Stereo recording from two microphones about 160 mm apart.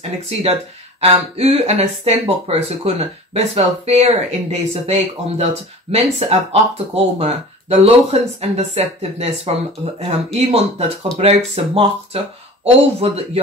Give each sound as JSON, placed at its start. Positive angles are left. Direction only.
{"t": 0.3, "sound": "speech", "side_deg": -40}